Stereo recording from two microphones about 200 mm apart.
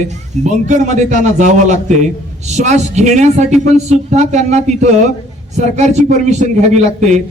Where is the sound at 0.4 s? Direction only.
35° right (ahead or behind).